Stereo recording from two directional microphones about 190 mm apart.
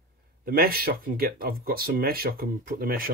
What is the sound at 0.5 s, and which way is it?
Speech, 50° right (ahead or behind).